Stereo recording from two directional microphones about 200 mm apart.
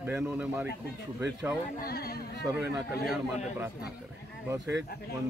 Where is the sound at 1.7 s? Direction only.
50° left (ahead or behind).